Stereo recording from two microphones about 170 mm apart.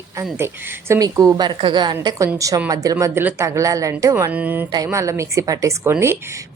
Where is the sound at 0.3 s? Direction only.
15° right (ahead or behind).